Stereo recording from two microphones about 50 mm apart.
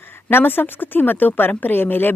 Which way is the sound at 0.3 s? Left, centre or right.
Left.